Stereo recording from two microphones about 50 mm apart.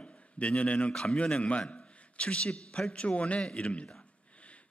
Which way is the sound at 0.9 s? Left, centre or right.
Centre.